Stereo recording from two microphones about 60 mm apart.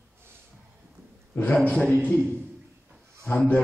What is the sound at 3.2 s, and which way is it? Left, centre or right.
Speech, left.